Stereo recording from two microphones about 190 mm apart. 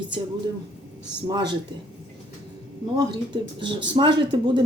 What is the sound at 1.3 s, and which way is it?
Speech, 25° right (ahead or behind).